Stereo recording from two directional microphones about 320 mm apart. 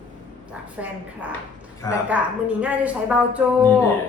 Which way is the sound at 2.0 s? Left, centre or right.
Centre.